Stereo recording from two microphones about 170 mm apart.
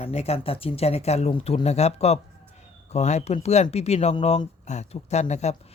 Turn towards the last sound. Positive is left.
turn(degrees=40)  # may be behind; listen again after turning